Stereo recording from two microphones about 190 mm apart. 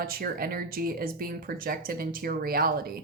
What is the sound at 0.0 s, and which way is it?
A woman's voice, 50° right (ahead or behind).